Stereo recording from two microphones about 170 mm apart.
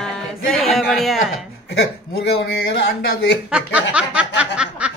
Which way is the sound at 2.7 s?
70° left (ahead or behind).